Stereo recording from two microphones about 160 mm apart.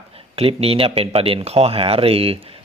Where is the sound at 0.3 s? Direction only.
35° right (ahead or behind).